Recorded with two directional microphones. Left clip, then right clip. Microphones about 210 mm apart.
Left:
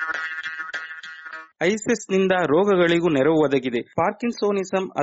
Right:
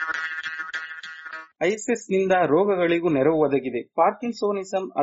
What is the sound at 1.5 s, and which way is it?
A man's voice, 25° left (ahead or behind).